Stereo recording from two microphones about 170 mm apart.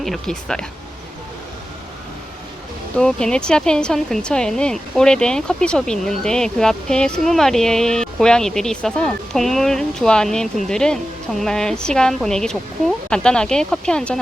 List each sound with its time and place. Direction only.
0.0 s speech: centre (ahead or behind)
2.9 s speech: 5° left (ahead or behind)